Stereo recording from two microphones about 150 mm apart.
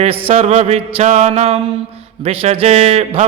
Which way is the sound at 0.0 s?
40° right (ahead or behind).